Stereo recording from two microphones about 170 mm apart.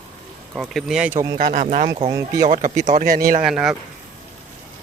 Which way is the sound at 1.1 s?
20° right (ahead or behind).